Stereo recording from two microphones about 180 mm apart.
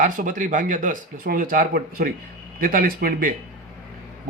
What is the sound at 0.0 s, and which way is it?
Speech, 45° right (ahead or behind).